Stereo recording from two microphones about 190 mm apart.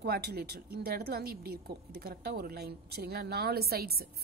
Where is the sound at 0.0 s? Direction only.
55° right (ahead or behind).